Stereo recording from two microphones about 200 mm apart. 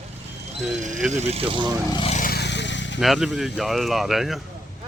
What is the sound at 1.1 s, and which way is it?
Speech, 30° right (ahead or behind).